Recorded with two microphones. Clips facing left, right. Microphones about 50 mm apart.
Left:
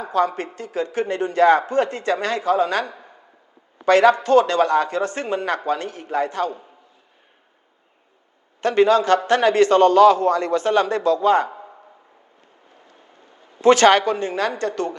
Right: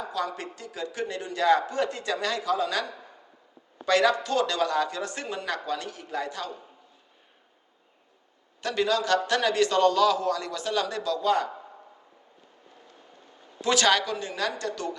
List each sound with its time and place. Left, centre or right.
0.0 s a man's voice: left
8.6 s a man's voice: left
13.6 s a man's voice: left